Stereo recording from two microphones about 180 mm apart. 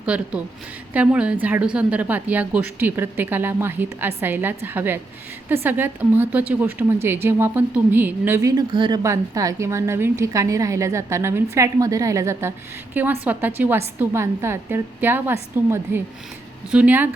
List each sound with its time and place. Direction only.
0.0 s a woman's voice: 5° right (ahead or behind)